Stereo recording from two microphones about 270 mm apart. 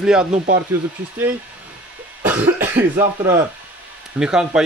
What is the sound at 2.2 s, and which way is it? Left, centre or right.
Speech, centre.